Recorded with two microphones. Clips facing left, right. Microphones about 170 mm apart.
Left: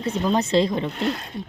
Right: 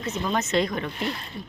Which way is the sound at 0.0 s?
30° left (ahead or behind).